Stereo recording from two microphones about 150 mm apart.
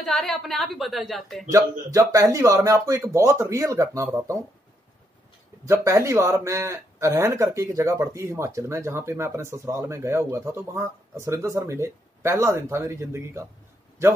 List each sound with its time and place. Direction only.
0.0 s a woman's voice: centre (ahead or behind)
1.5 s speech: 25° right (ahead or behind)
5.7 s speech: 20° right (ahead or behind)